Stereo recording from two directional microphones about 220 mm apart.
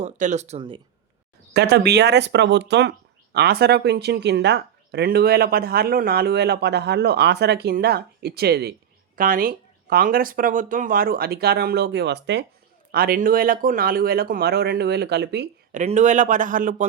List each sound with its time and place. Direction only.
0.0 s speech: 30° right (ahead or behind)
1.5 s speech: 50° right (ahead or behind)
15.7 s speech: 35° right (ahead or behind)